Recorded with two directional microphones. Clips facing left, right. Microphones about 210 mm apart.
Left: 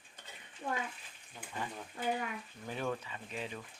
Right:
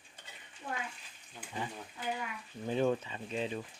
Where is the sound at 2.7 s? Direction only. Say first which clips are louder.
Right 7 dB; 25° right (ahead or behind).